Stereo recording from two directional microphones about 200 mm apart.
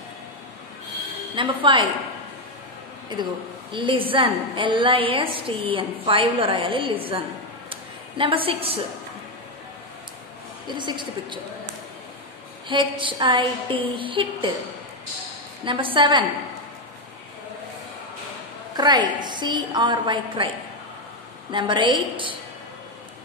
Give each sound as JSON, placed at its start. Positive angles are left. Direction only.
{"t": 1.3, "sound": "a woman's voice", "side_deg": -25}
{"t": 3.7, "sound": "a woman's voice", "side_deg": -25}
{"t": 7.7, "sound": "a sound", "side_deg": -25}
{"t": 10.8, "sound": "a woman's voice", "side_deg": -25}
{"t": 12.6, "sound": "a woman's voice", "side_deg": -25}
{"t": 15.6, "sound": "a woman's voice", "side_deg": -25}
{"t": 18.8, "sound": "a woman's voice", "side_deg": -20}
{"t": 21.5, "sound": "a woman's voice", "side_deg": -25}